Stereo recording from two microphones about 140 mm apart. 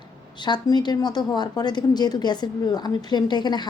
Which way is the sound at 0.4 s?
30° left (ahead or behind).